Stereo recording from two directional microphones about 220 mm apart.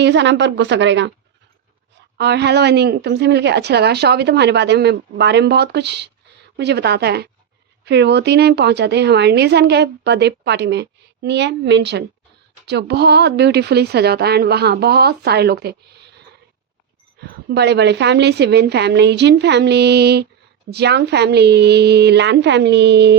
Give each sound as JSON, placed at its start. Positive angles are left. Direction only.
{"t": 0.0, "sound": "a woman's voice", "side_deg": -55}
{"t": 2.1, "sound": "a woman's voice", "side_deg": -50}
{"t": 17.2, "sound": "a woman's voice", "side_deg": -50}